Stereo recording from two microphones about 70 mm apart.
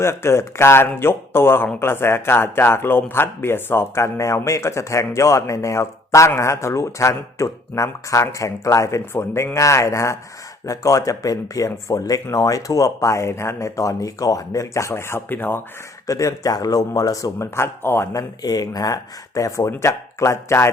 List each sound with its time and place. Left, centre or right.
0.0 s speech: left
16.0 s speech: left
18.1 s speech: left